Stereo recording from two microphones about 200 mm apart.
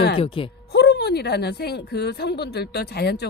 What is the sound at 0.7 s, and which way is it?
A woman's voice, 55° left (ahead or behind).